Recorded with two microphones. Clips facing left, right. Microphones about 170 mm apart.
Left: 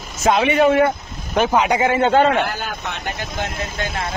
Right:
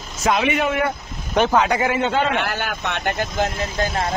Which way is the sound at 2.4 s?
75° right (ahead or behind).